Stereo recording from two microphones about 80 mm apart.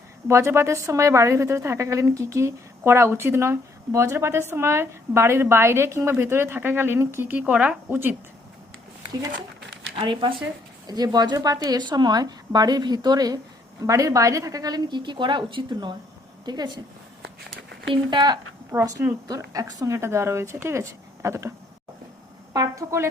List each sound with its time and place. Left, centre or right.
0.3 s speech: right
7.3 s speech: centre
7.9 s speech: right
9.9 s speech: right
10.8 s a woman's voice: right
11.8 s a woman's voice: right
16.5 s a woman's voice: right
18.1 s speech: right
18.7 s speech: right
19.3 s speech: right
19.9 s speech: right
22.5 s speech: right